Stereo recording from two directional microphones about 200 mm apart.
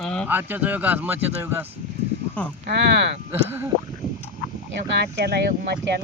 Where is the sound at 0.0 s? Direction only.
5° left (ahead or behind).